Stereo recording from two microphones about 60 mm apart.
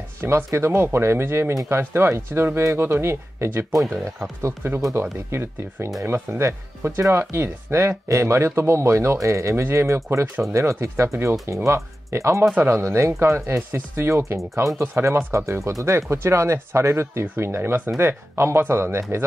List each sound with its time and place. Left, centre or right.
0.2 s speech: right
3.8 s speech: centre
4.6 s speech: right